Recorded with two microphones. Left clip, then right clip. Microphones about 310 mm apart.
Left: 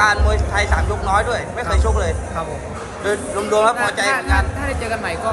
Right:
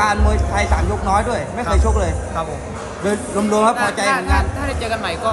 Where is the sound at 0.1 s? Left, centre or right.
Right.